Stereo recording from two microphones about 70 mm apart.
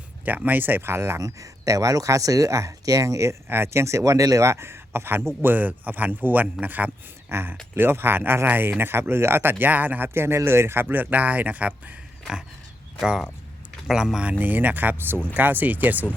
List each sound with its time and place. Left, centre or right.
0.3 s speech: right
1.2 s speech: right
3.5 s speech: right
13.8 s speech: centre
14.3 s speech: right